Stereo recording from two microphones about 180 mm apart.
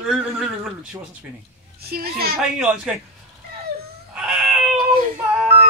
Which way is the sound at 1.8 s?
60° right (ahead or behind).